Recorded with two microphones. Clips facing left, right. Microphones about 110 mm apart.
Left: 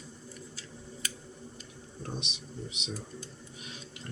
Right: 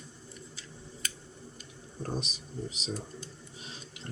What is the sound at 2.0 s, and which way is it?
Speech, 40° right (ahead or behind).